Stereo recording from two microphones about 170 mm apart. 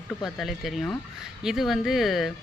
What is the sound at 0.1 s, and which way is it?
Speech, centre (ahead or behind).